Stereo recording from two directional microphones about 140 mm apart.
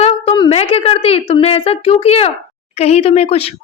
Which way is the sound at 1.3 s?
45° left (ahead or behind).